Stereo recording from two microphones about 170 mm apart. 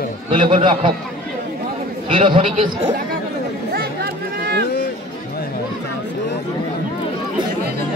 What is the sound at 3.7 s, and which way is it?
Chatter, 70° right (ahead or behind).